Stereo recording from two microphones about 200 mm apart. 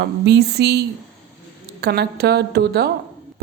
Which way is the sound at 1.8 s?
50° right (ahead or behind).